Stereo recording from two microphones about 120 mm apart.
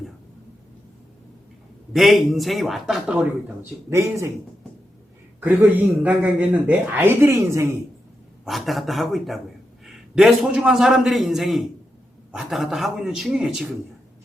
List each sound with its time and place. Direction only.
1.9 s a man's voice: centre (ahead or behind)
3.1 s speech: 15° right (ahead or behind)
5.4 s speech: 15° right (ahead or behind)
8.4 s a man's voice: centre (ahead or behind)